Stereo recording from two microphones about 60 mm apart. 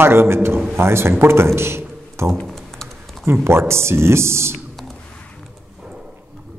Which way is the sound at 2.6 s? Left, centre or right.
Centre.